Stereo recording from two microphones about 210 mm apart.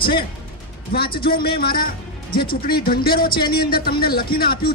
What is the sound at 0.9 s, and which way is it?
Speech, 45° left (ahead or behind).